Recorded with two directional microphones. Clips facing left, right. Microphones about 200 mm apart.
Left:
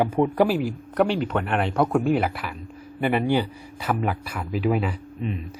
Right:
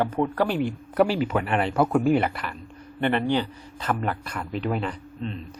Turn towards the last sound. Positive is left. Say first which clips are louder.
# left 3 dB
turn(degrees=10)  # may be behind; listen again after turning